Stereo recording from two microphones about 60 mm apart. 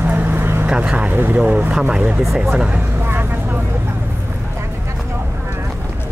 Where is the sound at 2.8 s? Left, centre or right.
Right.